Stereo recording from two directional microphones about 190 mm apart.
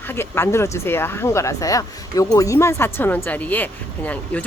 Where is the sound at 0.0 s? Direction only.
10° left (ahead or behind).